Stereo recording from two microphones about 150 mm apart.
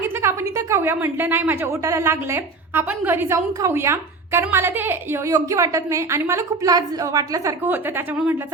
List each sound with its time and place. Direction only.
0.0 s a woman's voice: 20° right (ahead or behind)